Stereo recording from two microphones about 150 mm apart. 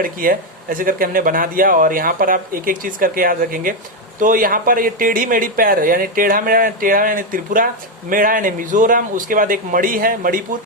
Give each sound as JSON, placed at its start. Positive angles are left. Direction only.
{"t": 0.0, "sound": "speech", "side_deg": -70}